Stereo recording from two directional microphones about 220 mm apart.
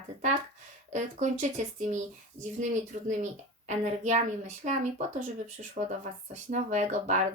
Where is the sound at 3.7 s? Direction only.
30° right (ahead or behind).